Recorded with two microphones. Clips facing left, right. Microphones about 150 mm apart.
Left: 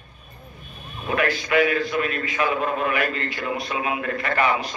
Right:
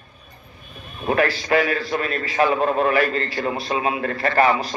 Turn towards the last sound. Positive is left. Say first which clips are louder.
# right 4 dB
turn(degrees=-35)  # may be behind; listen again after turning